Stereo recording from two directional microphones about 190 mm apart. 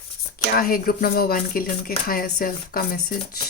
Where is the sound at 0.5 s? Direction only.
50° left (ahead or behind).